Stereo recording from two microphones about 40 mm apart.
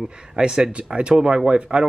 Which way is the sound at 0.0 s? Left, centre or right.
Centre.